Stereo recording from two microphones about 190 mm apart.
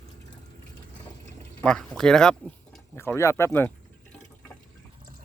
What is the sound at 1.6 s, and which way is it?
Speech, 5° left (ahead or behind).